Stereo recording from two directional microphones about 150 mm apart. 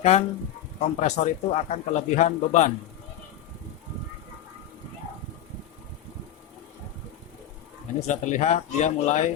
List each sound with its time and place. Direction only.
0.0 s speech: 45° left (ahead or behind)
7.9 s speech: 50° left (ahead or behind)